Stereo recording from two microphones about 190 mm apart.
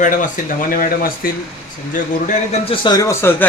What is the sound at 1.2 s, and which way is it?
Speech, 50° left (ahead or behind).